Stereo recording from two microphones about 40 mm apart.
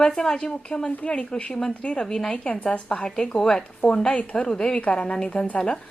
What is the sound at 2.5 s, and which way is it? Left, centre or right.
Speech, left.